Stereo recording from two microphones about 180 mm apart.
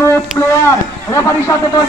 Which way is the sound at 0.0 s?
15° left (ahead or behind).